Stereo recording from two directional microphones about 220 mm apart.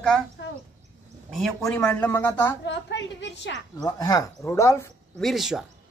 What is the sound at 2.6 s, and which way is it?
A woman's voice, 55° left (ahead or behind).